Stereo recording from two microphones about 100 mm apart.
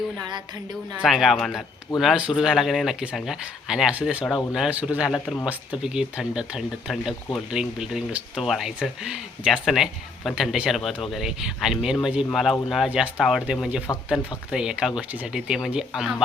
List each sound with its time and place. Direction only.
0.2 s speech: 45° right (ahead or behind)
1.0 s speech: centre (ahead or behind)
5.1 s speech: 5° left (ahead or behind)
5.7 s speech: 10° right (ahead or behind)
13.9 s speech: 35° left (ahead or behind)
14.5 s speech: 10° right (ahead or behind)